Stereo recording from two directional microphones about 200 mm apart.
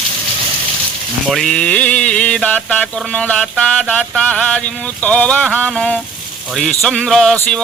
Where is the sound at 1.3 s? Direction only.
Centre (ahead or behind).